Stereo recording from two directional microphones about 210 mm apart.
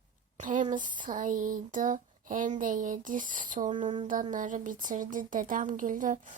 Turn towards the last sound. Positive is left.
turn(degrees=-35)  # may be behind; listen again after turning